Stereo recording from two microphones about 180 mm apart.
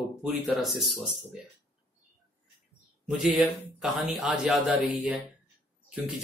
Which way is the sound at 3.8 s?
Centre (ahead or behind).